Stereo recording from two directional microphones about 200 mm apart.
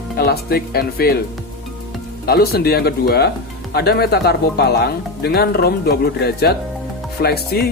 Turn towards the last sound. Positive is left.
turn(degrees=50)  # may be behind; listen again after turning